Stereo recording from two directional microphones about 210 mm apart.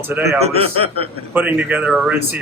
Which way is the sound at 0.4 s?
30° right (ahead or behind).